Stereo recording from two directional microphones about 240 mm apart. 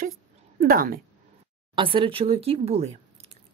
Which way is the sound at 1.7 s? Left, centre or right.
Right.